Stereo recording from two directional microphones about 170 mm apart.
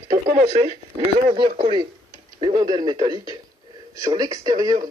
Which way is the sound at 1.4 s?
30° right (ahead or behind).